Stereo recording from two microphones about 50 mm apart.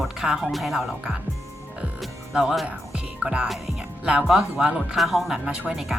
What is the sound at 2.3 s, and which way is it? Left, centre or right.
Speech, centre.